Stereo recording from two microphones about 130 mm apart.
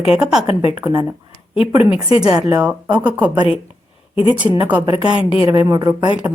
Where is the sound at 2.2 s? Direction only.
5° right (ahead or behind).